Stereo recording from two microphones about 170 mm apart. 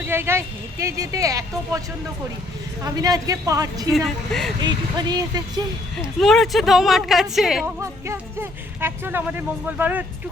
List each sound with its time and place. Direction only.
0.0 s speech: 15° right (ahead or behind)
2.8 s speech: 20° right (ahead or behind)
3.9 s speech: centre (ahead or behind)
4.6 s speech: 25° right (ahead or behind)
6.1 s speech: centre (ahead or behind)
7.8 s speech: 15° right (ahead or behind)